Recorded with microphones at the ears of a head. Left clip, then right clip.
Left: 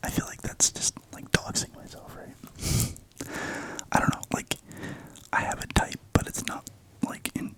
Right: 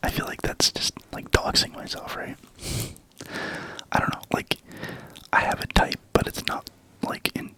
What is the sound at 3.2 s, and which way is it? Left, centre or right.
Whispering, centre.